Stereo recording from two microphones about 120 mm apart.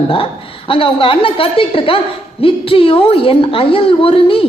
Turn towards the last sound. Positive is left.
turn(degrees=50)  # may be behind; listen again after turning